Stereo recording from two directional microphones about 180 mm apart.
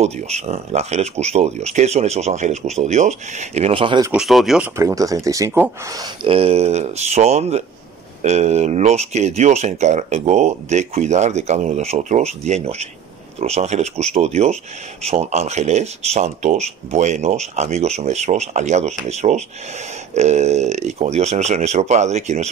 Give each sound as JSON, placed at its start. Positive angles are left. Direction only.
{"t": 0.0, "sound": "speech", "side_deg": -35}
{"t": 4.1, "sound": "speech", "side_deg": 0}
{"t": 4.7, "sound": "speech", "side_deg": -15}
{"t": 6.2, "sound": "speech", "side_deg": -30}